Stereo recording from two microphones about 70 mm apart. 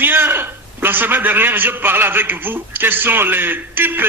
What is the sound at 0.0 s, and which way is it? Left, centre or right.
A man's voice, right.